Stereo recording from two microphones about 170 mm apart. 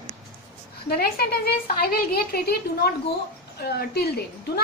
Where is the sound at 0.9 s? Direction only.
65° left (ahead or behind).